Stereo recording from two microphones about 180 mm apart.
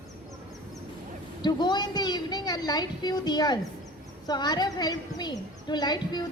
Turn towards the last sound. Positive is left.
turn(degrees=25)  # may be behind; listen again after turning